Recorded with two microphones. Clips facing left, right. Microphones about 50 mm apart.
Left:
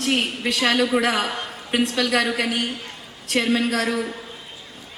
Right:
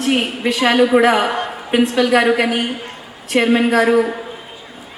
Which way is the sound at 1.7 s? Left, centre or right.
Centre.